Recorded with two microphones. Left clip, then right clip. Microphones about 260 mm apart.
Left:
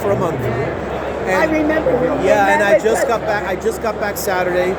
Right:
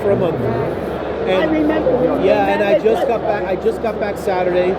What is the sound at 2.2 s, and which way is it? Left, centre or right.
Speech, centre.